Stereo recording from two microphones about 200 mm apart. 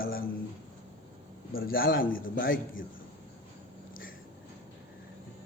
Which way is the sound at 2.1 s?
75° left (ahead or behind).